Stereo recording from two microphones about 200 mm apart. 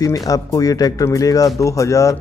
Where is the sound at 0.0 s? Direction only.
15° left (ahead or behind).